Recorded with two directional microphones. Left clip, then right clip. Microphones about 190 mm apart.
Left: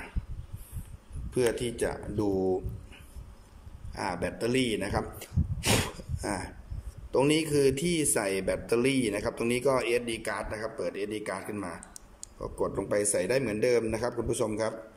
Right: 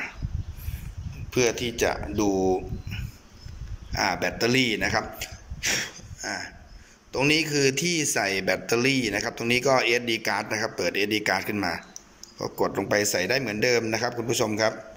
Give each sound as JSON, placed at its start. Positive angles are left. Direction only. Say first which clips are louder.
{"t": 1.3, "sound": "a man's voice", "louder": "right 4 dB", "side_deg": 10}
{"t": 4.9, "sound": "a sound", "louder": "right 6 dB", "side_deg": 20}
{"t": 7.1, "sound": "a man's voice", "louder": "right 3 dB", "side_deg": 15}